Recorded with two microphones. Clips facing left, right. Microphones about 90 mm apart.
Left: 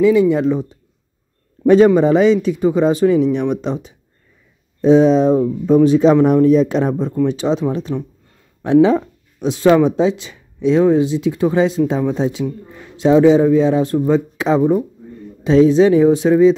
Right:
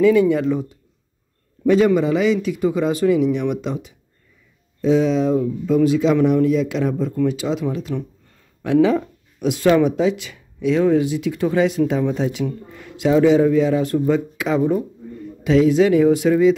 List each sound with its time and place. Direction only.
0.0 s speech: 20° left (ahead or behind)
1.6 s a sound: 35° left (ahead or behind)
2.0 s speech: 35° left (ahead or behind)
7.9 s speech: 20° left (ahead or behind)
14.6 s speech: 15° left (ahead or behind)
15.4 s speech: 30° left (ahead or behind)